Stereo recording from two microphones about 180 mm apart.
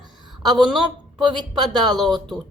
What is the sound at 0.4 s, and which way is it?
Speech, 25° right (ahead or behind).